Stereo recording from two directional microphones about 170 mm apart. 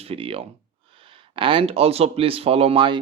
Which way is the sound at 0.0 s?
35° right (ahead or behind).